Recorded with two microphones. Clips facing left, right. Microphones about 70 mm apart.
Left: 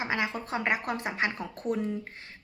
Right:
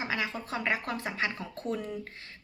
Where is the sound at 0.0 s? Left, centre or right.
Left.